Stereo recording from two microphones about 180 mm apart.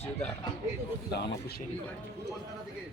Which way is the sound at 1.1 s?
60° left (ahead or behind).